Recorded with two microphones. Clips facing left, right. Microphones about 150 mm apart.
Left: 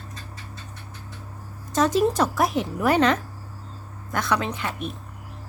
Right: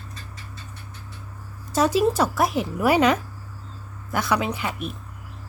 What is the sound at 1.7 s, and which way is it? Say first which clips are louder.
Speech: right 1 dB; 5° right (ahead or behind).